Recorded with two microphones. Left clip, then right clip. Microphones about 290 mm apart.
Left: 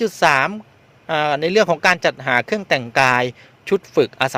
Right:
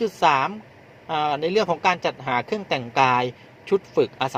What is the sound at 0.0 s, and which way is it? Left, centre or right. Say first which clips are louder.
A man's voice: left 4 dB; left.